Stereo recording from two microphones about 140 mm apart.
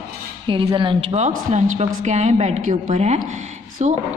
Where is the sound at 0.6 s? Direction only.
35° right (ahead or behind).